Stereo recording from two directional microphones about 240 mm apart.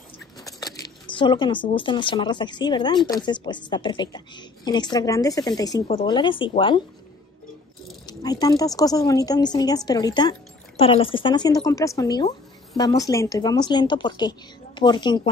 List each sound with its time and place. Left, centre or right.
0.4 s speech: centre
8.1 s speech: centre